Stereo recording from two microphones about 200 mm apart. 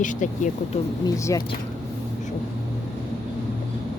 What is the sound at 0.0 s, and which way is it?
Speech, 40° left (ahead or behind).